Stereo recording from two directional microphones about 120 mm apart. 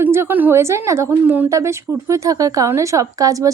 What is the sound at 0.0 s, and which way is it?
A woman's voice, 20° right (ahead or behind).